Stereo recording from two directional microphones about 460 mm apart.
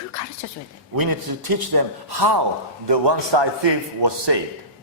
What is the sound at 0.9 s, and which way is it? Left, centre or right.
A man's voice, right.